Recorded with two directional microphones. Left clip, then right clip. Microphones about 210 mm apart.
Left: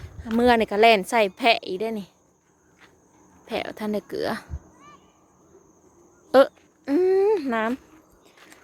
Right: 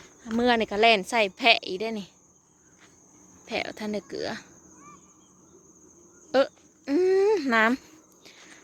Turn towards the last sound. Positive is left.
turn(degrees=-10)  # may be behind; listen again after turning